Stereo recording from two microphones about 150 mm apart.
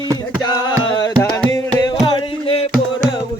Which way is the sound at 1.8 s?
30° left (ahead or behind).